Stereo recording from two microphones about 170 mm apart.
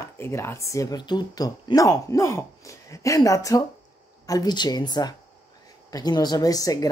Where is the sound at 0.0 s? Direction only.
15° left (ahead or behind).